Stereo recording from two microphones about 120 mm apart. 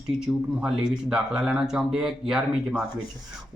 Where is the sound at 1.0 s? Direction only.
5° right (ahead or behind).